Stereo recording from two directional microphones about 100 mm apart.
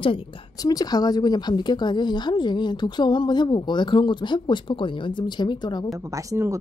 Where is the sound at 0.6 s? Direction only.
40° left (ahead or behind).